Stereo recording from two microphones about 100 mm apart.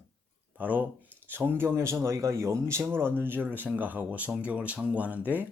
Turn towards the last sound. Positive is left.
turn(degrees=-15)  # may be behind; listen again after turning